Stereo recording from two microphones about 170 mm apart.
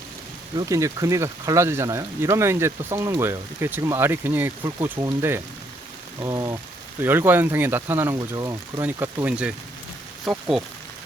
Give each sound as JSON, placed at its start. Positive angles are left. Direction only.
{"t": 0.5, "sound": "speech", "side_deg": -20}
{"t": 5.0, "sound": "rain on surface", "side_deg": -25}
{"t": 6.1, "sound": "rain on surface", "side_deg": -20}
{"t": 7.0, "sound": "speech", "side_deg": -10}